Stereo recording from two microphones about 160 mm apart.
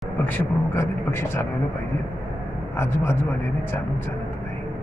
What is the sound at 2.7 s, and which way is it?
A man's voice, 15° left (ahead or behind).